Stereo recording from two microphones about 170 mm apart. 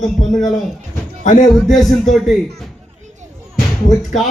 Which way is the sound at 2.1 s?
Centre (ahead or behind).